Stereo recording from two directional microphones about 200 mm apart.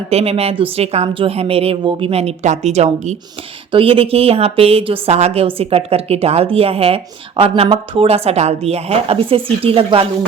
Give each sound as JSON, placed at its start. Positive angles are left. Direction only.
{"t": 0.1, "sound": "a woman's voice", "side_deg": -30}